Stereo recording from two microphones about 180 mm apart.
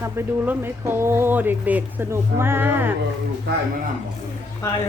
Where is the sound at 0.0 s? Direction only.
15° right (ahead or behind).